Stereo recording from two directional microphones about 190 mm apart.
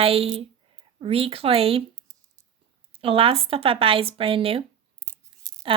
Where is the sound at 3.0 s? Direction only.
30° right (ahead or behind).